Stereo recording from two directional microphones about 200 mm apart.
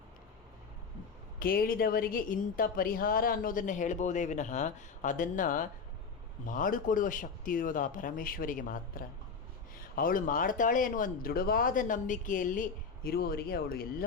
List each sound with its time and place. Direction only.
1.4 s a woman's voice: 45° left (ahead or behind)